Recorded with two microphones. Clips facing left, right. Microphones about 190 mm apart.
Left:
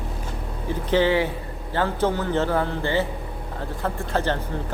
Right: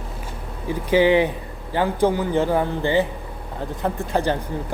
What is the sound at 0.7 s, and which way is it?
Speech, 10° right (ahead or behind).